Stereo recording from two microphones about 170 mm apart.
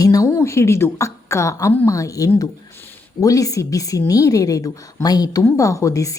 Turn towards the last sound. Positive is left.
turn(degrees=20)  # may be behind; listen again after turning